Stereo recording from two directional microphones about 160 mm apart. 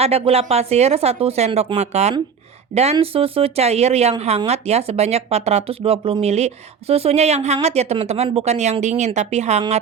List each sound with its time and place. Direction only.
0.0 s speech: 40° right (ahead or behind)